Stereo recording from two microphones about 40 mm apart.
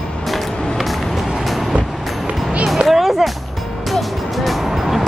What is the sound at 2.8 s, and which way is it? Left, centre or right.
Music, centre.